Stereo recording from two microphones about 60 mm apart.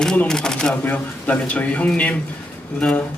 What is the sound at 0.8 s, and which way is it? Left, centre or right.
Speech, left.